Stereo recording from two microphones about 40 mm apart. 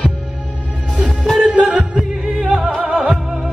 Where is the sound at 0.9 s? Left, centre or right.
Centre.